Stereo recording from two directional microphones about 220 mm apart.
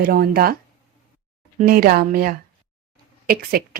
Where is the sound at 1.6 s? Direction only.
40° right (ahead or behind).